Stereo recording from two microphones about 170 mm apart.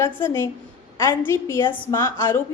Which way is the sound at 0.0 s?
15° left (ahead or behind).